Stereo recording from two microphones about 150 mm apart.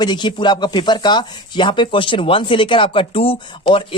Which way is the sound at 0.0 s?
30° left (ahead or behind).